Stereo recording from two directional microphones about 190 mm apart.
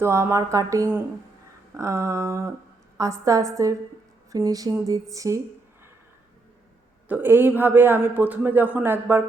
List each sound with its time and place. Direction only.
0.0 s a man's voice: 15° right (ahead or behind)
7.1 s a man's voice: 10° right (ahead or behind)